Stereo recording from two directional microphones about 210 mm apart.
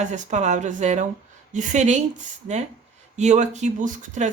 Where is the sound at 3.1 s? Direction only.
35° right (ahead or behind).